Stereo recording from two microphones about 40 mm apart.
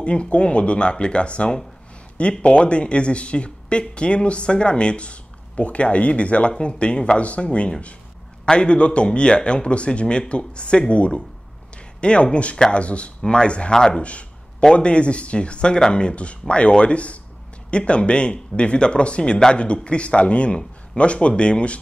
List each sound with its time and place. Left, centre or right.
0.0 s speech: left
8.5 s speech: left